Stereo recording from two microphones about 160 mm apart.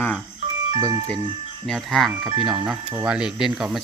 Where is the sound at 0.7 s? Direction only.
25° right (ahead or behind).